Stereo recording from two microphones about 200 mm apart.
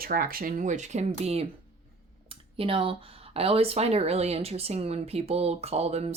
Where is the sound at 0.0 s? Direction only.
45° right (ahead or behind).